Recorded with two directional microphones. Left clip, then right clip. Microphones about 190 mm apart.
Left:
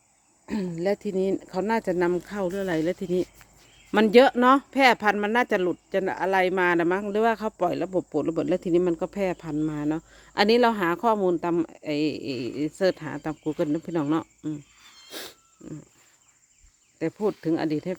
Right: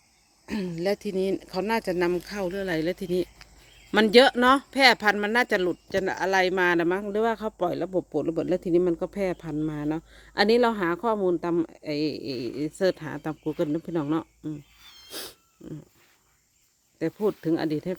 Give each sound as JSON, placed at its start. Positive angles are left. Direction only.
{"t": 0.4, "sound": "speech", "side_deg": 15}
{"t": 15.1, "sound": "insect", "side_deg": 5}
{"t": 17.0, "sound": "speech", "side_deg": 0}